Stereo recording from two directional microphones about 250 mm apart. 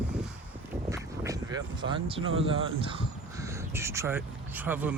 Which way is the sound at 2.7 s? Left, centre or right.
Right.